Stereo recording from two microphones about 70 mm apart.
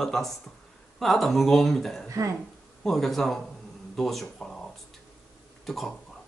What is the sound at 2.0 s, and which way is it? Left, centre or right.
Speech, right.